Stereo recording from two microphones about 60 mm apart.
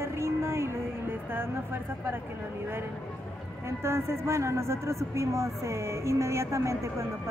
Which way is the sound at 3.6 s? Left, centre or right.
Right.